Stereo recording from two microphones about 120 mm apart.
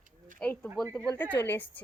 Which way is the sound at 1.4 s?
15° left (ahead or behind).